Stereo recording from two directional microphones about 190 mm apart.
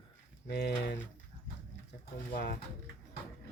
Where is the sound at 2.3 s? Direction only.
60° left (ahead or behind).